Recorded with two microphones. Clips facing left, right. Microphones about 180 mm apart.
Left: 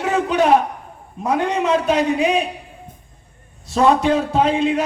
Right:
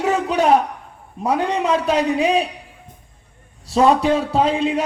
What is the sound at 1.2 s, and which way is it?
A man's voice, 35° right (ahead or behind).